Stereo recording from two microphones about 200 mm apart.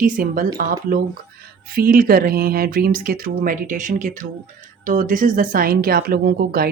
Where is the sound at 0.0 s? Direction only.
45° right (ahead or behind).